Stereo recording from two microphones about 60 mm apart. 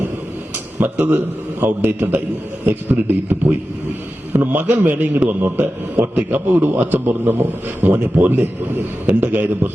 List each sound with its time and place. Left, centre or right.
0.8 s a man's voice: right